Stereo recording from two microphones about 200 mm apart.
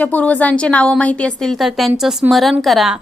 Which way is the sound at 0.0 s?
10° left (ahead or behind).